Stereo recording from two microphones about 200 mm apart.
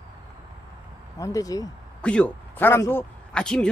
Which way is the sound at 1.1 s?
15° left (ahead or behind).